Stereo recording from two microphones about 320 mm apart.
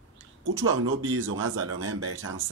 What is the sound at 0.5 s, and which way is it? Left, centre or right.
Speech, right.